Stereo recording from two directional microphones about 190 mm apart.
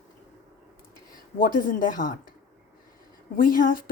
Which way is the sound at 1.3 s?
50° left (ahead or behind).